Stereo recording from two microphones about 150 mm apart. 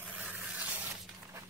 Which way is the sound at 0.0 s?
10° right (ahead or behind).